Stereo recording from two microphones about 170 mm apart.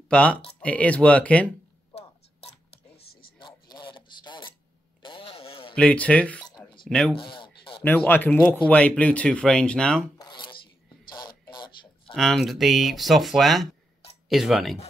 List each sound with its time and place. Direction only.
0.1 s speech: 5° left (ahead or behind)
3.3 s a sound: 25° left (ahead or behind)
5.0 s vehicle: 30° left (ahead or behind)
5.8 s speech: 5° left (ahead or behind)
7.2 s a sound: 30° left (ahead or behind)
7.8 s speech: 10° left (ahead or behind)
10.1 s zipper: 25° left (ahead or behind)
11.1 s a sound: 25° left (ahead or behind)
12.1 s speech: centre (ahead or behind)